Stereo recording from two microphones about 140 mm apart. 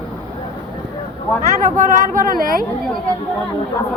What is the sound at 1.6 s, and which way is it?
Speech, 65° right (ahead or behind).